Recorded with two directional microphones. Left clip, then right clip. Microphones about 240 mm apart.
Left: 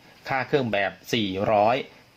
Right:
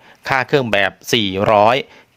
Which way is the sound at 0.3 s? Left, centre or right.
Right.